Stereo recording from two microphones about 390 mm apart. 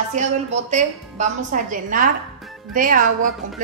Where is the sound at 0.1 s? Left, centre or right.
Centre.